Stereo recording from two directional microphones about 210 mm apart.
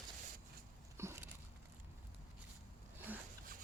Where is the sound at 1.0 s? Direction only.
10° right (ahead or behind).